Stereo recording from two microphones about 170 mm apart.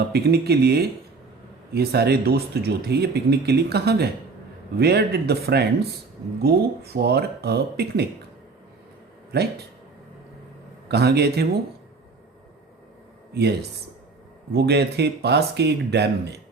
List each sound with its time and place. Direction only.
0.1 s speech: 70° right (ahead or behind)
9.3 s speech: 70° right (ahead or behind)
10.8 s speech: 70° right (ahead or behind)
13.3 s speech: 75° right (ahead or behind)